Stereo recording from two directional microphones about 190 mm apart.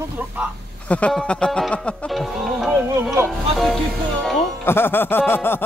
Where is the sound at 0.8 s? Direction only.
5° left (ahead or behind).